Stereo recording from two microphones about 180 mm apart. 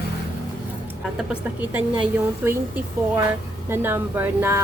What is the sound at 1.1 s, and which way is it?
A woman's voice, 5° right (ahead or behind).